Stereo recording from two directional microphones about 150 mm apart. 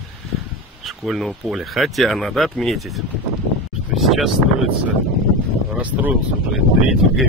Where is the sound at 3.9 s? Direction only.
Centre (ahead or behind).